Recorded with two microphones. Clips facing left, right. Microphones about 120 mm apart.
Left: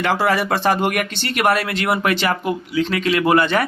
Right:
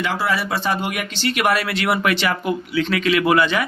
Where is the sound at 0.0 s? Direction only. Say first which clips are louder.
Left 4 dB; 50° left (ahead or behind).